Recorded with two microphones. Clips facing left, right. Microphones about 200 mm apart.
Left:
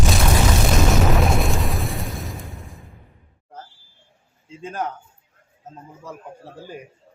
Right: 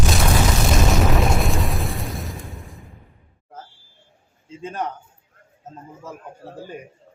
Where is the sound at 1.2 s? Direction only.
Centre (ahead or behind).